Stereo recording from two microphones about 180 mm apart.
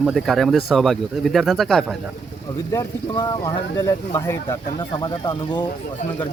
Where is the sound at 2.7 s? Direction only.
20° left (ahead or behind).